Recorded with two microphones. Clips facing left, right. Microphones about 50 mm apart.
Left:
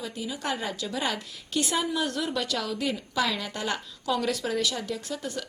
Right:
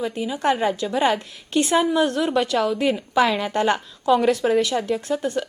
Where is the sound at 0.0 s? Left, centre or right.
Right.